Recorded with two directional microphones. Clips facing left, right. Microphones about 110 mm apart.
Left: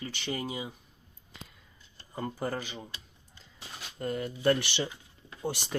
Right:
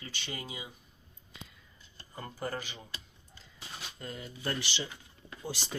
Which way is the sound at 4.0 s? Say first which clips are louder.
Left 12 dB; 60° left (ahead or behind).